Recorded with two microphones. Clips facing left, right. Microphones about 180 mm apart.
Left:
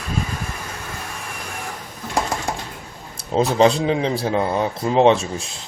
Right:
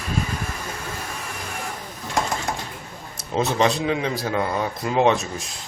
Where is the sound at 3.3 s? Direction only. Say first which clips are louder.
Left 5 dB; 30° left (ahead or behind).